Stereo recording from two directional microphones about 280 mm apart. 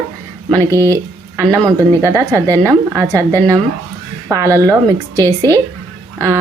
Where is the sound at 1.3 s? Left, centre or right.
Centre.